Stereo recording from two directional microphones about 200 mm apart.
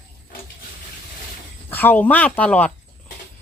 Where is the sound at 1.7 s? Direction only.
10° left (ahead or behind).